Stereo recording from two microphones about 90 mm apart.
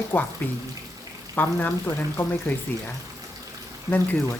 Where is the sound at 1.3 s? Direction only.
20° left (ahead or behind).